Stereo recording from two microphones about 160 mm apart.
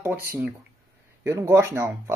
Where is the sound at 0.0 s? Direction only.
15° right (ahead or behind).